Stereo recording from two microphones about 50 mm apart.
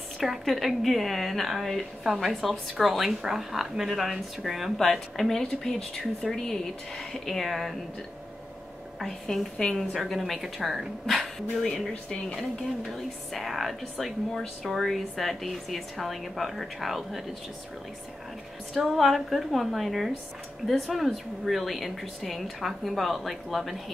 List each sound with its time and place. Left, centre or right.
0.2 s speech: centre
9.0 s speech: centre
11.1 s speech: centre
11.9 s speech: left
12.4 s speech: centre
18.7 s speech: centre